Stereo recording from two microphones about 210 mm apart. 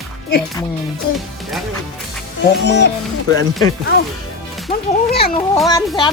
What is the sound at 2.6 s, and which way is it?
Speech, 55° left (ahead or behind).